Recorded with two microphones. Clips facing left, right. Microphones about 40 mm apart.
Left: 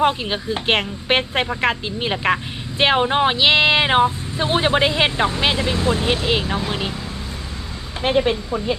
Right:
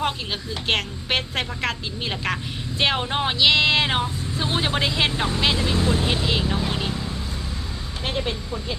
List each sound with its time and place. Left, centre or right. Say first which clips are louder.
0.0 s speech: left 7 dB; left
8.0 s speech: left 9 dB; left